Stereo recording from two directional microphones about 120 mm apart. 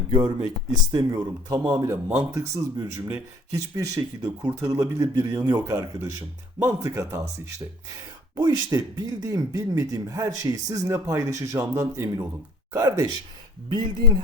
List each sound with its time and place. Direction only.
0.9 s speech: 30° right (ahead or behind)
13.7 s speech: 40° right (ahead or behind)